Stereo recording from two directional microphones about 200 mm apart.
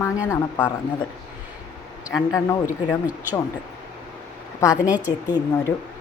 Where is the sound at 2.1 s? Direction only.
15° left (ahead or behind).